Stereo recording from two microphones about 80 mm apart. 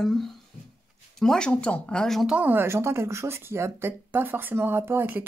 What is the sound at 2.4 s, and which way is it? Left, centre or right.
Speech, right.